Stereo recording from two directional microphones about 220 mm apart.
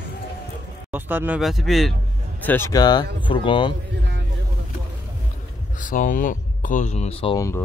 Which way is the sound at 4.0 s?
50° right (ahead or behind).